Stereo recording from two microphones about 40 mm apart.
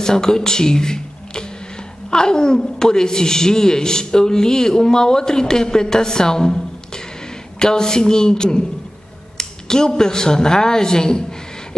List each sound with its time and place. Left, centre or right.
0.0 s a woman's voice: centre